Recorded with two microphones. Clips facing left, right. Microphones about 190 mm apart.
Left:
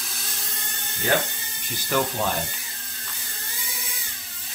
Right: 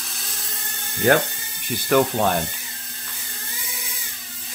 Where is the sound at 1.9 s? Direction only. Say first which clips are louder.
Right 7 dB; 60° right (ahead or behind).